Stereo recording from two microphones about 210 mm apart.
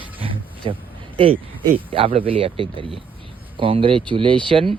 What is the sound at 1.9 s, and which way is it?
Speech, 25° right (ahead or behind).